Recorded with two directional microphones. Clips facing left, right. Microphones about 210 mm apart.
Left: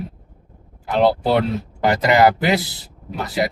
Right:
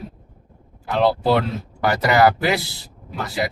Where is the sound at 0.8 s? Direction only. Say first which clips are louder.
Left 1 dB; 20° left (ahead or behind).